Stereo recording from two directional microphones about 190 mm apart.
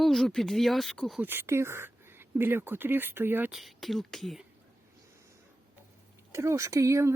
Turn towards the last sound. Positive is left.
turn(degrees=-15)  # may be behind; listen again after turning